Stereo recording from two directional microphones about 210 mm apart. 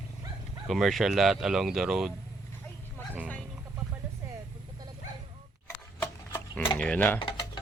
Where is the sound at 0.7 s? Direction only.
Centre (ahead or behind).